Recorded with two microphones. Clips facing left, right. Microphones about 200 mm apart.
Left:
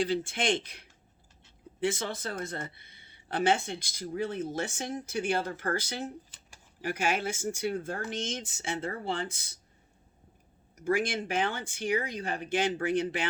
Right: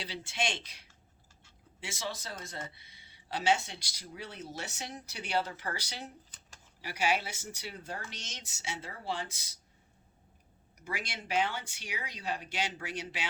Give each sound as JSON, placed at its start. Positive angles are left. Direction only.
{"t": 0.0, "sound": "speech", "side_deg": 50}
{"t": 10.8, "sound": "speech", "side_deg": 50}